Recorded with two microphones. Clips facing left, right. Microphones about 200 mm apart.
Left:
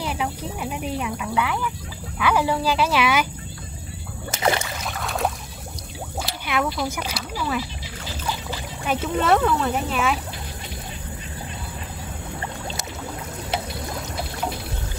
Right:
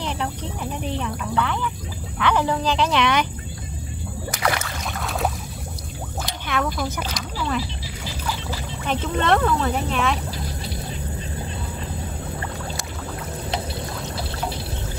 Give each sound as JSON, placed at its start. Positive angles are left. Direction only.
{"t": 0.0, "sound": "speech", "side_deg": 5}
{"t": 4.3, "sound": "rowboat", "side_deg": 25}
{"t": 4.8, "sound": "boat", "side_deg": 0}
{"t": 6.4, "sound": "speech", "side_deg": 10}
{"t": 8.8, "sound": "speech", "side_deg": 5}